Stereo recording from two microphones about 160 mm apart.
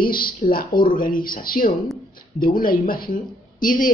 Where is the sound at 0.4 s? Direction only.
60° left (ahead or behind).